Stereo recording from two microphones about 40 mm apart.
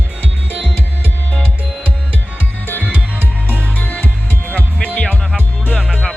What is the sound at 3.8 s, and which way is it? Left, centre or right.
Music, left.